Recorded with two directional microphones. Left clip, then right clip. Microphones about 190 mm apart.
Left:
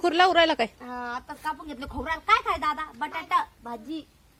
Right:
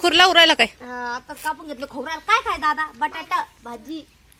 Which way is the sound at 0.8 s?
30° left (ahead or behind).